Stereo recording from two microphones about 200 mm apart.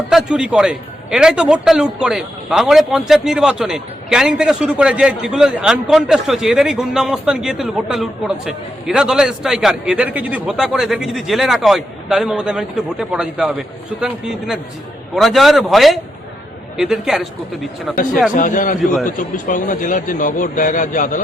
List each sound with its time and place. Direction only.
0.1 s a man's voice: 5° right (ahead or behind)
18.3 s a man's voice: 40° left (ahead or behind)